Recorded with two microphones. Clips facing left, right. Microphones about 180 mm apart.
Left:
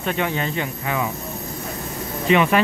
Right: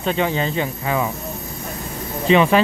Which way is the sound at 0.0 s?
30° right (ahead or behind).